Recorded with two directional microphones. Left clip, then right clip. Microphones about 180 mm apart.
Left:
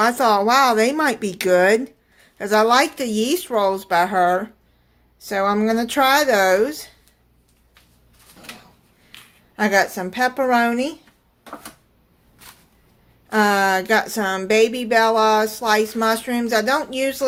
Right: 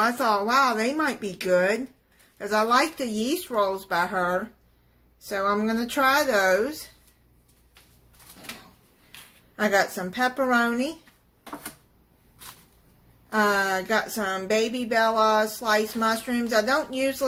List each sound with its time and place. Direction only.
0.0 s speech: 40° left (ahead or behind)
9.6 s speech: 35° left (ahead or behind)
13.3 s speech: 45° left (ahead or behind)